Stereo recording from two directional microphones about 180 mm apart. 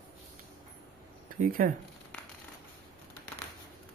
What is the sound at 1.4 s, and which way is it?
Speech, 50° right (ahead or behind).